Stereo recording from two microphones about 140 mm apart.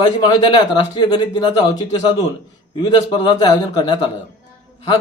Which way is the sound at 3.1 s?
35° left (ahead or behind).